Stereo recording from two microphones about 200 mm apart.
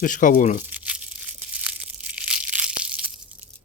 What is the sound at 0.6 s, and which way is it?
Tearing, 5° right (ahead or behind).